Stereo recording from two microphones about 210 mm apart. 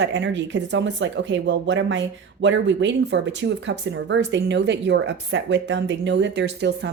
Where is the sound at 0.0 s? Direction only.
55° right (ahead or behind).